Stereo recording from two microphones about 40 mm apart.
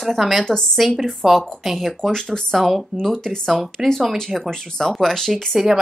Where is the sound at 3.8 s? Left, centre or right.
Centre.